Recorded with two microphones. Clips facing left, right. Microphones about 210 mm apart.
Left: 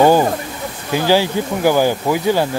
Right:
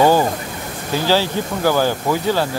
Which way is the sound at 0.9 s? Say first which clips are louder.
Left 3 dB; 15° left (ahead or behind).